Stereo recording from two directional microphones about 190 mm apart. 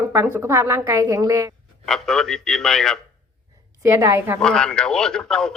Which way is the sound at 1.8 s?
Centre (ahead or behind).